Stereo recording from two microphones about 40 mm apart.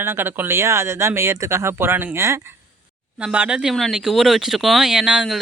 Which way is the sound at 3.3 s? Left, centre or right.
Right.